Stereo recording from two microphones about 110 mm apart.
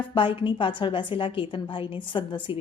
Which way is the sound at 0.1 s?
50° left (ahead or behind).